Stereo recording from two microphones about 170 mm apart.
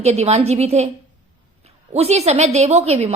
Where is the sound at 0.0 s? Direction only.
40° right (ahead or behind).